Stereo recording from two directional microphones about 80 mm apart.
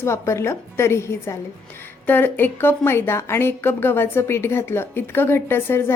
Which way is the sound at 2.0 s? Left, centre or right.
Left.